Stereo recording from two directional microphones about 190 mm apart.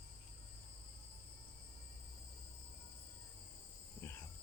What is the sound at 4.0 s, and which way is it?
Cricket, 15° left (ahead or behind).